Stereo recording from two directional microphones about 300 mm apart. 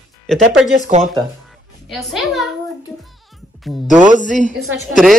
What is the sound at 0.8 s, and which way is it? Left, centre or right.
Speech, right.